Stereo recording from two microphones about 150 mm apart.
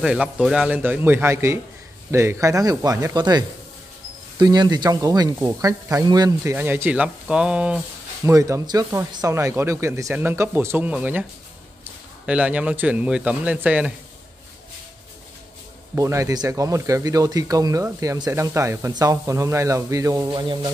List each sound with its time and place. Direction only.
0.0 s speech: 5° right (ahead or behind); by 6.5 s 25° right (ahead or behind)
6.5 s speech: 15° right (ahead or behind)
8.3 s a man's voice: 20° right (ahead or behind)
15.9 s speech: 20° right (ahead or behind)